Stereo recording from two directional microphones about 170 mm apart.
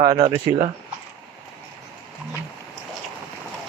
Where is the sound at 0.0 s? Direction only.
20° right (ahead or behind).